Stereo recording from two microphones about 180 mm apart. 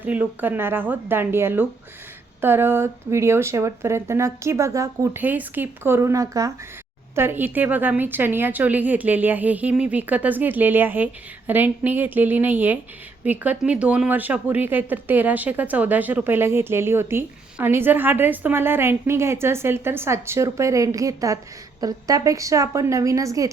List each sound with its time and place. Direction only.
0.0 s speech: 10° right (ahead or behind)